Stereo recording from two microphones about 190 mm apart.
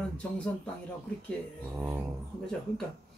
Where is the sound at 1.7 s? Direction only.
10° right (ahead or behind).